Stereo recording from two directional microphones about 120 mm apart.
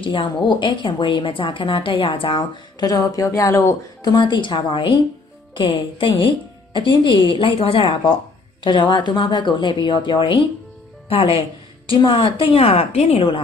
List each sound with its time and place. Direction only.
0.0 s a woman's voice: 40° left (ahead or behind); by 4.1 s 25° left (ahead or behind)
4.1 s a woman's voice: 40° left (ahead or behind)